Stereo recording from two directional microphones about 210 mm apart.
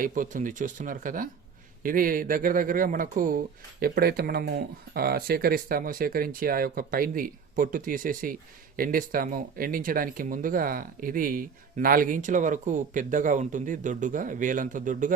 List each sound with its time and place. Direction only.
0.0 s speech: 40° right (ahead or behind)